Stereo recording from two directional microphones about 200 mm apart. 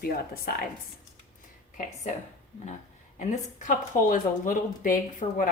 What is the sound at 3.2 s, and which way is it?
A woman's voice, 40° left (ahead or behind).